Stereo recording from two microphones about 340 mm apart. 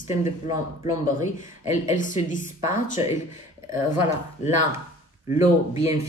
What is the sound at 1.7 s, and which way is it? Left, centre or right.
Speech, left.